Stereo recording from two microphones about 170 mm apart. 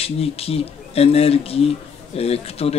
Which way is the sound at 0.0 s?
35° left (ahead or behind).